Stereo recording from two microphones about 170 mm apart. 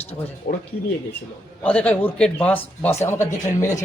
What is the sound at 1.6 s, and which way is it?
A man's voice, 10° left (ahead or behind).